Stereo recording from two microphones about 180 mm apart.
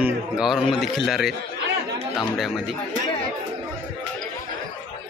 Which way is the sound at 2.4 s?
Centre (ahead or behind).